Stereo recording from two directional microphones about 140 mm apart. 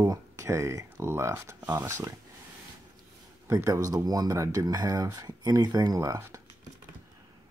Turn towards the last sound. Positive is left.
turn(degrees=-20)  # may be behind; listen again after turning